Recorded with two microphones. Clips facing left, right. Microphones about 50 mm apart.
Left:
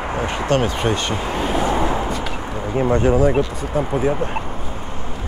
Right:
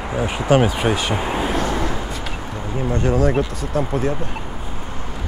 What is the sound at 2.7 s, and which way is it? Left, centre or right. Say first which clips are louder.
Speech: left 4 dB; left.